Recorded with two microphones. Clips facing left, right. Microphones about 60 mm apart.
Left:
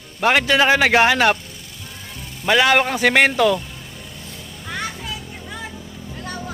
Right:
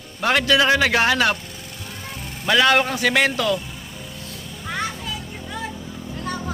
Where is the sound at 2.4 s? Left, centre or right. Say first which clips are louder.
Left 1 dB; left.